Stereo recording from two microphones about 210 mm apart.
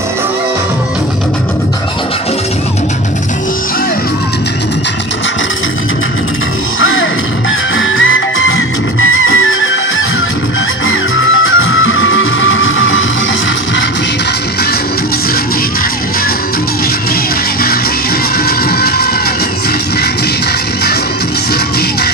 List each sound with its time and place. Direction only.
6.7 s music: 70° left (ahead or behind)
10.8 s music: 70° left (ahead or behind)
18.4 s music: 50° left (ahead or behind)